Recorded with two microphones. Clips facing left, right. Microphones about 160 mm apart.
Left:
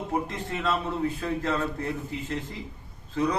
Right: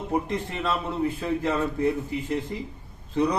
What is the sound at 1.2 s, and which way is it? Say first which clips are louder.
Speech: right 2 dB; 20° right (ahead or behind).